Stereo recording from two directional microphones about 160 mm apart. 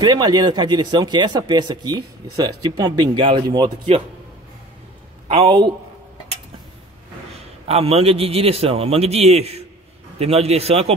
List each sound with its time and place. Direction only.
0.0 s speech: 25° right (ahead or behind)
5.3 s a man's voice: 35° right (ahead or behind)
7.6 s a man's voice: 40° right (ahead or behind)